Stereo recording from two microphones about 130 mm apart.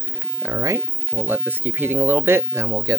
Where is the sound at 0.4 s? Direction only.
25° right (ahead or behind).